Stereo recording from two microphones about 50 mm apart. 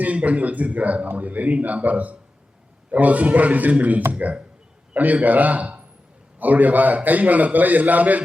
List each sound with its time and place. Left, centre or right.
0.0 s a man's voice: right